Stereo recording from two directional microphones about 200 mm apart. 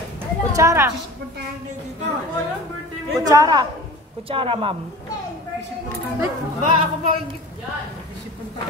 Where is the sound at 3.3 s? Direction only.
20° right (ahead or behind).